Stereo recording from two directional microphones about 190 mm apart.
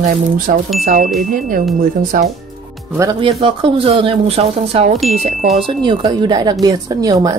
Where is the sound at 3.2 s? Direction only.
30° right (ahead or behind).